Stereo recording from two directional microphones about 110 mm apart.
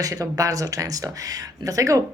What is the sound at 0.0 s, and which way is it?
Speech, 35° right (ahead or behind).